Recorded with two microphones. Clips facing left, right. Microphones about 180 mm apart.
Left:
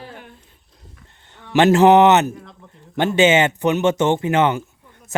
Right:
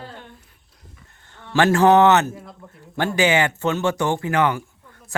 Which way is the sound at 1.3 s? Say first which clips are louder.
Left 4 dB; 20° left (ahead or behind).